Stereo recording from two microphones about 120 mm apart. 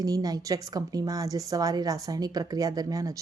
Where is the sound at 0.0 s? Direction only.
30° right (ahead or behind).